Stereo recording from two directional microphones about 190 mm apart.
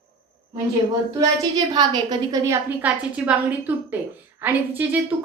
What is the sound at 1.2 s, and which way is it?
A woman's voice, 20° right (ahead or behind).